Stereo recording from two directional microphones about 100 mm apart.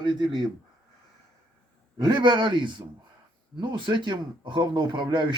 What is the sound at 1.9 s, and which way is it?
Speech, 45° right (ahead or behind).